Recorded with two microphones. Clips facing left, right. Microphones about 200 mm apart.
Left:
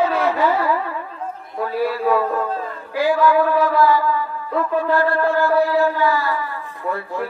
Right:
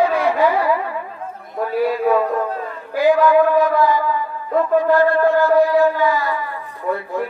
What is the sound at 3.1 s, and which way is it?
Speech, 20° right (ahead or behind).